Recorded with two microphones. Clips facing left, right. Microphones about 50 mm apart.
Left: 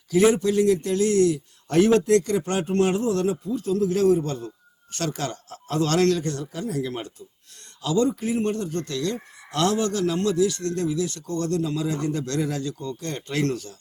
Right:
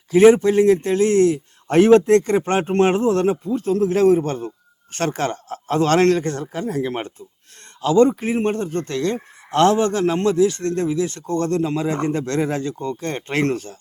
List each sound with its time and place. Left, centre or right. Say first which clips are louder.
0.1 s a man's voice: right 7 dB; right